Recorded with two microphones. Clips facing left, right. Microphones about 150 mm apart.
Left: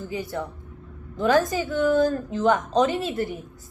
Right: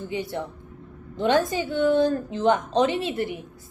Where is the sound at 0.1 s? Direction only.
25° right (ahead or behind).